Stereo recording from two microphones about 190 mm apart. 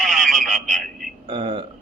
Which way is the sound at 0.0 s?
Centre (ahead or behind).